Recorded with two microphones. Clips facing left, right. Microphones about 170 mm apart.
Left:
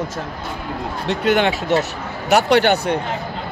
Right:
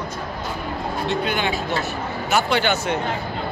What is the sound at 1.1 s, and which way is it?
Speech, 75° left (ahead or behind).